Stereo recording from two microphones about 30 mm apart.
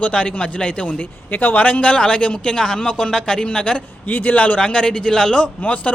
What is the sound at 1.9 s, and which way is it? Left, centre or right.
Speech, left.